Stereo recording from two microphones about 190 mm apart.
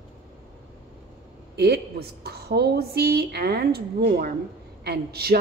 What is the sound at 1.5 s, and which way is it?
A woman's voice, 60° right (ahead or behind).